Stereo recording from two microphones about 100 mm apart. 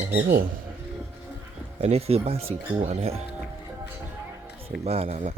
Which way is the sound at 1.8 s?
90° right.